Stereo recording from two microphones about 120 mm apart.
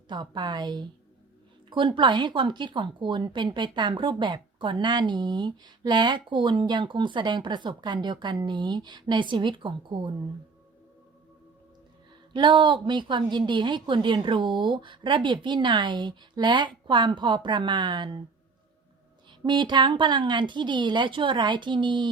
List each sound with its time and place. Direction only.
0.1 s speech: 40° right (ahead or behind)
12.3 s speech: 40° right (ahead or behind)
19.5 s speech: 40° right (ahead or behind)